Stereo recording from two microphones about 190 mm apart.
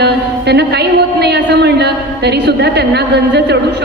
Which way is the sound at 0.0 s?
60° right (ahead or behind).